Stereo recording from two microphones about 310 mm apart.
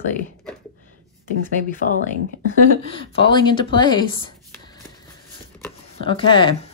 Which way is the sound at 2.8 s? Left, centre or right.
Centre.